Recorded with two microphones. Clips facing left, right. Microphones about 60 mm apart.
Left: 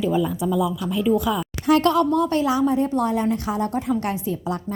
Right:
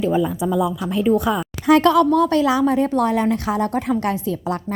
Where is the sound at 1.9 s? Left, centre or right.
Right.